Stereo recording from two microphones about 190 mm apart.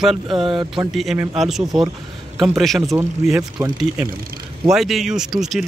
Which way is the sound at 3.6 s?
15° right (ahead or behind).